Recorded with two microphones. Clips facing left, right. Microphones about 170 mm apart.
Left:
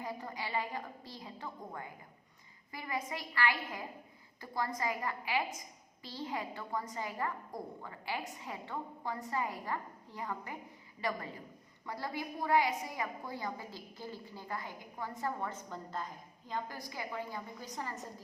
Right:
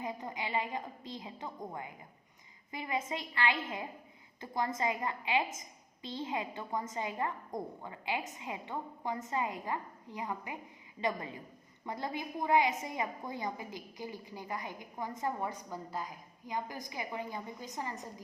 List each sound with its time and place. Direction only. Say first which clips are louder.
0.0 s a woman's voice: right 2 dB; 20° right (ahead or behind)